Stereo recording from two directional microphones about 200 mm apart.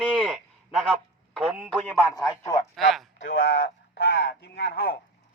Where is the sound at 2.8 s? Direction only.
Centre (ahead or behind).